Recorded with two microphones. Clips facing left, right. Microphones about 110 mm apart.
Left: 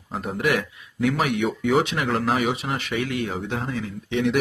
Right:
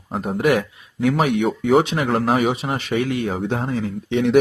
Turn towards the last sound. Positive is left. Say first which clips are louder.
# right 4 dB
turn(degrees=-40)  # may be behind; listen again after turning